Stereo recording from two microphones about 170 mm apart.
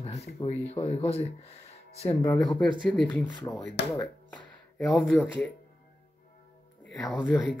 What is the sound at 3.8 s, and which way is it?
Speech, 85° left.